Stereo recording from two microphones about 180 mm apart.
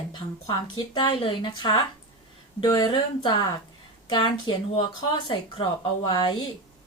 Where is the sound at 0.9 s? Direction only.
25° left (ahead or behind).